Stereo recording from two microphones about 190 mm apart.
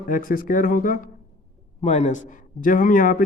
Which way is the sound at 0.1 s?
45° left (ahead or behind).